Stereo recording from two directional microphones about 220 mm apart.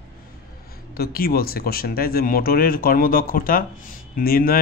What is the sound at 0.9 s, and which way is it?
A man's voice, 45° left (ahead or behind).